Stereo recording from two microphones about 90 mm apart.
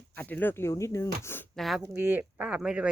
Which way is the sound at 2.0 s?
20° right (ahead or behind).